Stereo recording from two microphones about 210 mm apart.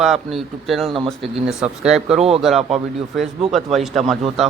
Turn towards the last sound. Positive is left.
turn(degrees=0)  # may be behind; listen again after turning